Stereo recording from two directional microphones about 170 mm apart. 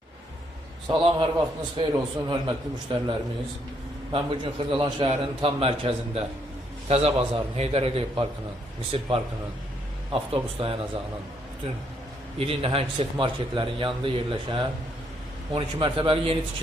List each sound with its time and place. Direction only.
0.9 s a man's voice: 25° right (ahead or behind)
4.1 s a man's voice: 30° right (ahead or behind)
12.4 s a man's voice: 35° right (ahead or behind)